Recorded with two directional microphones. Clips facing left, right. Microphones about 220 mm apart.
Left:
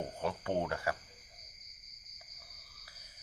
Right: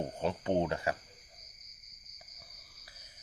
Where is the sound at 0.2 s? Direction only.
20° right (ahead or behind).